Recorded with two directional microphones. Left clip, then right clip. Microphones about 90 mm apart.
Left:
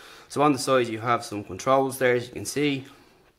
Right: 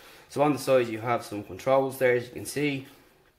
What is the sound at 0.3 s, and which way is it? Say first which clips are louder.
Speech: left 2 dB; 35° left (ahead or behind).